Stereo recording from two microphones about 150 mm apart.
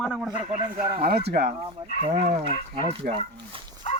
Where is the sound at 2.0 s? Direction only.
45° right (ahead or behind).